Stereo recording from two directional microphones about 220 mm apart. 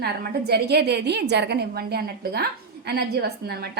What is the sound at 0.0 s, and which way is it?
A woman's voice, 45° right (ahead or behind).